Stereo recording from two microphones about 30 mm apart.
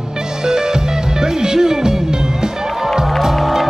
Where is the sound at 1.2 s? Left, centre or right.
Right.